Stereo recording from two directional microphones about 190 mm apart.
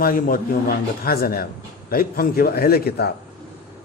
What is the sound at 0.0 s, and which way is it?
A man's voice, 50° left (ahead or behind).